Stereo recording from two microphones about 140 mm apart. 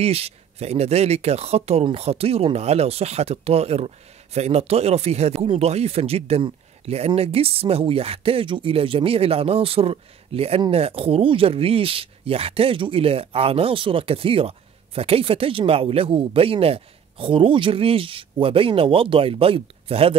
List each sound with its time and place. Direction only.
0.0 s speech: 45° right (ahead or behind)